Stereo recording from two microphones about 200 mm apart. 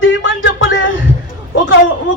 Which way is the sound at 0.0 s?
70° left (ahead or behind).